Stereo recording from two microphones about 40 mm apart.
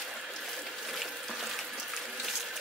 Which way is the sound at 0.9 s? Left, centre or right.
Centre.